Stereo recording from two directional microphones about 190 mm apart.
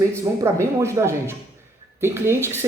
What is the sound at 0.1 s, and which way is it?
Speech, 15° right (ahead or behind).